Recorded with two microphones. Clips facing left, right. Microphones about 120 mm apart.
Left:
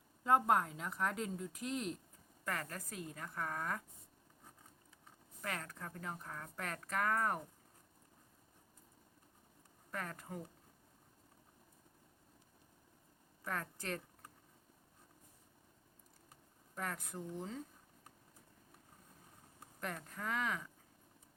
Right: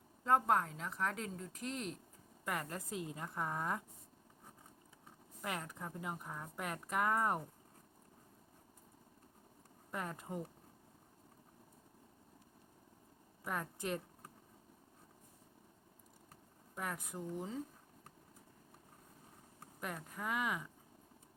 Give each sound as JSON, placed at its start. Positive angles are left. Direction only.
{"t": 0.3, "sound": "a woman's voice", "side_deg": 5}
{"t": 2.4, "sound": "a woman's voice", "side_deg": -15}
{"t": 5.4, "sound": "speech", "side_deg": -15}
{"t": 9.9, "sound": "a woman's voice", "side_deg": -20}
{"t": 13.4, "sound": "a woman's voice", "side_deg": -15}
{"t": 16.7, "sound": "speech", "side_deg": -10}
{"t": 19.8, "sound": "speech", "side_deg": -10}